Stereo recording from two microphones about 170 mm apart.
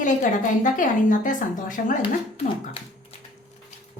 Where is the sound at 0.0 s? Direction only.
50° left (ahead or behind).